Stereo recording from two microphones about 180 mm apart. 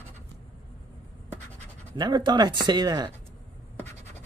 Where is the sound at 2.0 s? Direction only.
25° right (ahead or behind).